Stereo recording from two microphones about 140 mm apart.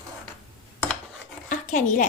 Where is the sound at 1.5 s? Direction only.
65° left (ahead or behind).